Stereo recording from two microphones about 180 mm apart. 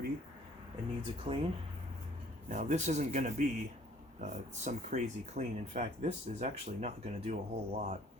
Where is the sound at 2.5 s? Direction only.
40° right (ahead or behind).